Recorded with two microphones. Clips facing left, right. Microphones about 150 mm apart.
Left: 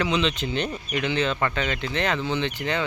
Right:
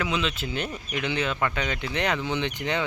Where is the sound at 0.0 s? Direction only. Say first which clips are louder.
Left 4 dB; 5° right (ahead or behind).